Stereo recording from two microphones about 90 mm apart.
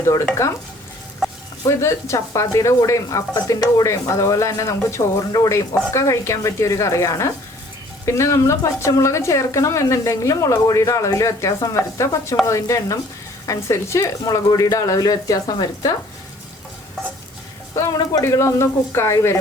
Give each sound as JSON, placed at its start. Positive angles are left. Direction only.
{"t": 1.2, "sound": "a sound", "side_deg": -5}
{"t": 1.8, "sound": "speech", "side_deg": 35}
{"t": 17.7, "sound": "speech", "side_deg": 40}